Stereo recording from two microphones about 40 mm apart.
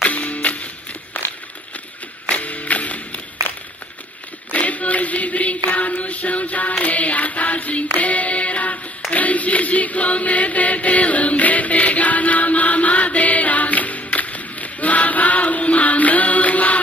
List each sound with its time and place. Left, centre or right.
0.0 s music: left
1.1 s a sound: left
2.2 s a sound: left
4.5 s chant: left
6.8 s music: left
9.1 s chant: left